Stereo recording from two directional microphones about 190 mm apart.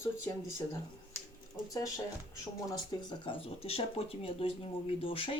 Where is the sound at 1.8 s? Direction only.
15° left (ahead or behind).